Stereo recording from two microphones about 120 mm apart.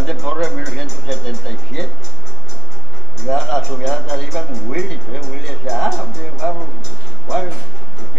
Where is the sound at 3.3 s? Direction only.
5° left (ahead or behind).